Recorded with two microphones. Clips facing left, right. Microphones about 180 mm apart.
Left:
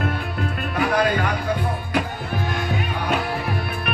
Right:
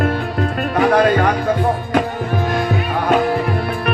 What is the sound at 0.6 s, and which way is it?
Music, 55° right (ahead or behind).